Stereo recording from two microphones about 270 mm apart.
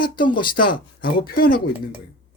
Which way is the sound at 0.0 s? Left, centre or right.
Left.